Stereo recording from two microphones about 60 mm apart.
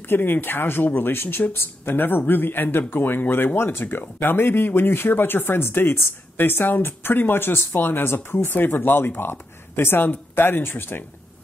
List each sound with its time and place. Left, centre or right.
0.1 s speech: left